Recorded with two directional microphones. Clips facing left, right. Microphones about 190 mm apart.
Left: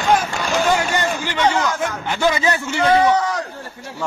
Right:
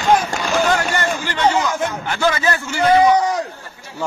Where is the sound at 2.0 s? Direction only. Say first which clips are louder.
Left 2 dB; 15° left (ahead or behind).